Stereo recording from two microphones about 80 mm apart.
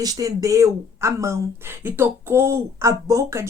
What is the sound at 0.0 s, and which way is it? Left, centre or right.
Speech, right.